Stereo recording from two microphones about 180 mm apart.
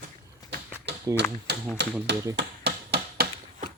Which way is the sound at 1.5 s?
65° right (ahead or behind).